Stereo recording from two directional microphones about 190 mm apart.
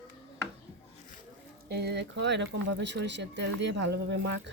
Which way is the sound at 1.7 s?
60° right (ahead or behind).